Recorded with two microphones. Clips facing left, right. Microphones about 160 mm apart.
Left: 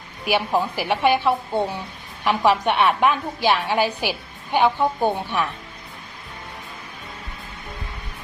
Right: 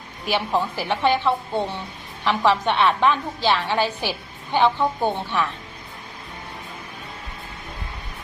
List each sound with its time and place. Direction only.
0.3 s a woman's voice: 15° left (ahead or behind)